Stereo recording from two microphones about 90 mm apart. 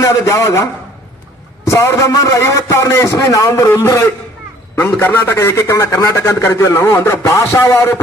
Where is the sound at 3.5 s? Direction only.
30° left (ahead or behind).